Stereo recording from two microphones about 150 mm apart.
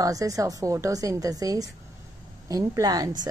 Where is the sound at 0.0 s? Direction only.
20° right (ahead or behind).